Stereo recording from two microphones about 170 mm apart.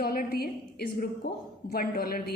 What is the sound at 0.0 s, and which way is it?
A woman's voice, 60° left (ahead or behind).